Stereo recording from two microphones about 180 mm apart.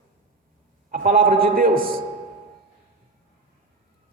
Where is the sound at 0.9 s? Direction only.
50° right (ahead or behind).